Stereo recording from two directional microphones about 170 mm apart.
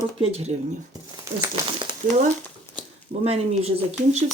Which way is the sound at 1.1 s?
20° right (ahead or behind).